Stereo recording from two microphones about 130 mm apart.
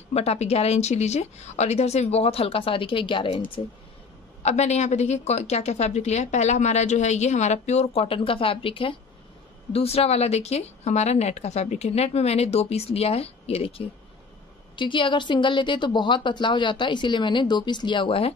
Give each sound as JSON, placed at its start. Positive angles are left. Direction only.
{"t": 0.1, "sound": "speech", "side_deg": 55}
{"t": 4.4, "sound": "a woman's voice", "side_deg": 60}